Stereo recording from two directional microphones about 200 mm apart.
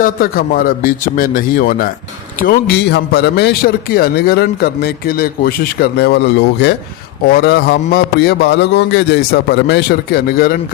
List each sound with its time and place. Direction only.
0.0 s a man's voice: 45° left (ahead or behind)